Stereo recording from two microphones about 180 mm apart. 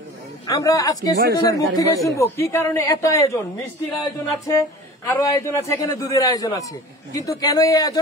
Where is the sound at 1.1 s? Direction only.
65° right (ahead or behind).